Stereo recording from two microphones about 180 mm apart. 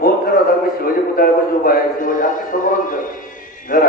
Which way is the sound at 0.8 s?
55° left (ahead or behind).